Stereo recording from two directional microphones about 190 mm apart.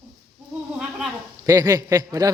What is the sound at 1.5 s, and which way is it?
Speech, 15° right (ahead or behind).